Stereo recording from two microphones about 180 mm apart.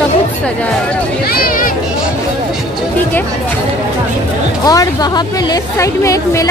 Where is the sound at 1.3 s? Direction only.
55° left (ahead or behind).